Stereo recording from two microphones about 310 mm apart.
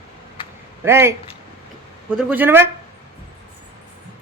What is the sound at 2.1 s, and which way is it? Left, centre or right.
Speech, centre.